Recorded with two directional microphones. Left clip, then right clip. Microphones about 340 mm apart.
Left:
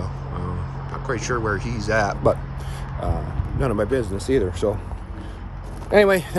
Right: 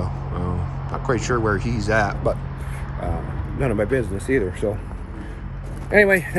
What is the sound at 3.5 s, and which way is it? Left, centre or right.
Speech, centre.